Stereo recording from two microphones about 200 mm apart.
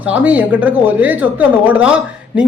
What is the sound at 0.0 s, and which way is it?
Speech, 5° right (ahead or behind).